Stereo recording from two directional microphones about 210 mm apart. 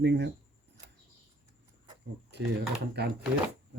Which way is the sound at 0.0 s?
55° right (ahead or behind).